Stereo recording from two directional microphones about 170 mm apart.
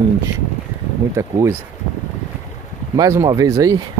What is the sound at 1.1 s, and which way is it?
Speech, 15° right (ahead or behind).